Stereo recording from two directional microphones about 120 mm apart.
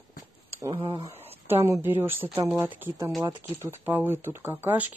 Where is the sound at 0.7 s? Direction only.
45° right (ahead or behind).